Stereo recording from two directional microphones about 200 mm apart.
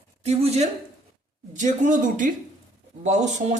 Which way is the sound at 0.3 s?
30° right (ahead or behind).